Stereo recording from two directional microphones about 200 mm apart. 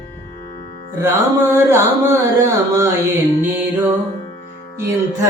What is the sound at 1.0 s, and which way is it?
Speech, 10° right (ahead or behind).